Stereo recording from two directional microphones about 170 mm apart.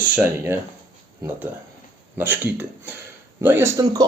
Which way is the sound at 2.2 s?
10° right (ahead or behind).